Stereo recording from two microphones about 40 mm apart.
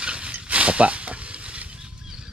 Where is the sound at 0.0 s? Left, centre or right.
Right.